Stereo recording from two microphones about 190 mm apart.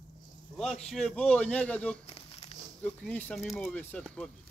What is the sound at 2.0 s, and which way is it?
Crumpling, 30° left (ahead or behind).